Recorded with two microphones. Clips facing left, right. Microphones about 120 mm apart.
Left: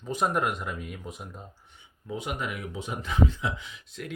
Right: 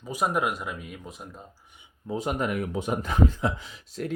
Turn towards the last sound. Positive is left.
turn(degrees=-35)  # may be behind; listen again after turning